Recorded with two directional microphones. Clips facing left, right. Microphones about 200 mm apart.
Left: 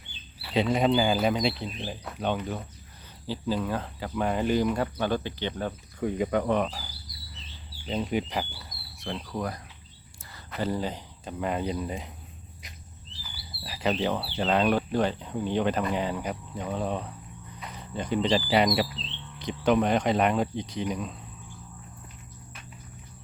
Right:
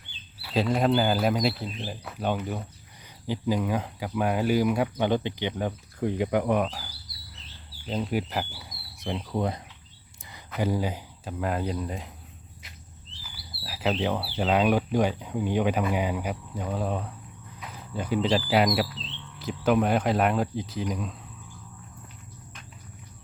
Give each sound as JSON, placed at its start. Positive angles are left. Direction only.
{"t": 0.4, "sound": "speech", "side_deg": 0}
{"t": 7.9, "sound": "speech", "side_deg": -5}
{"t": 9.0, "sound": "speech", "side_deg": -20}
{"t": 10.6, "sound": "speech", "side_deg": -10}
{"t": 13.3, "sound": "bird", "side_deg": -5}
{"t": 14.0, "sound": "speech", "side_deg": -5}